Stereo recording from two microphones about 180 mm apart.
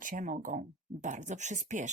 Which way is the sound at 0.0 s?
50° right (ahead or behind).